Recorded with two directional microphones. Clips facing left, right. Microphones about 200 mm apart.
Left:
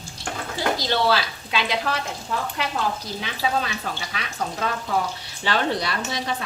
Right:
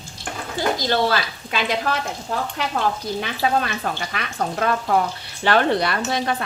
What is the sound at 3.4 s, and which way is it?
Speech, 55° right (ahead or behind).